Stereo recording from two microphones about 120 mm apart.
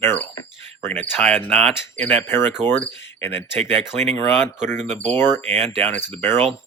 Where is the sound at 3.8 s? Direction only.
5° right (ahead or behind).